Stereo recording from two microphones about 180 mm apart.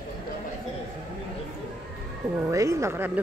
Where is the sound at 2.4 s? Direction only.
15° right (ahead or behind).